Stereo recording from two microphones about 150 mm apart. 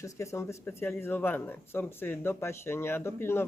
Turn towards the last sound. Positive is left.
turn(degrees=15)  # may be behind; listen again after turning